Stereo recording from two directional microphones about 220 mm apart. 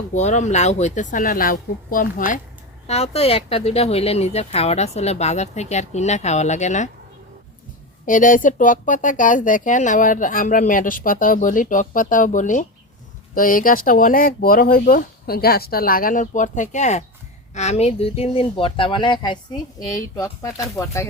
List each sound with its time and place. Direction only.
0.1 s speech: 30° left (ahead or behind)
8.0 s speech: 35° left (ahead or behind); by 21.1 s 15° left (ahead or behind)